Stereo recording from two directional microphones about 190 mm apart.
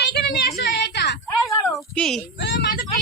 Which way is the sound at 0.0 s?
60° left (ahead or behind).